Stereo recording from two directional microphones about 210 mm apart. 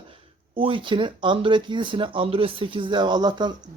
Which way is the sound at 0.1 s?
25° right (ahead or behind).